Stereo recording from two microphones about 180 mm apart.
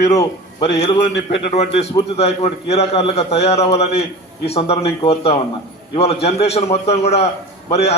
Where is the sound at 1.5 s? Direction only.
35° left (ahead or behind).